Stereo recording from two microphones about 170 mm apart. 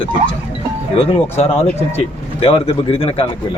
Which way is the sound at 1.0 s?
40° left (ahead or behind).